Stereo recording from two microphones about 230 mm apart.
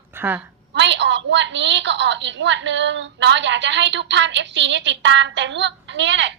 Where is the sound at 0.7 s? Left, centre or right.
Right.